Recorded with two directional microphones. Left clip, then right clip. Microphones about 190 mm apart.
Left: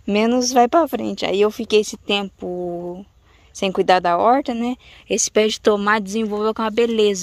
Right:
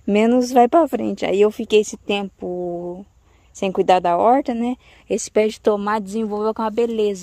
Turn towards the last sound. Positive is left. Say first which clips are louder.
# left 3 dB
turn(degrees=0)  # may be behind; listen again after turning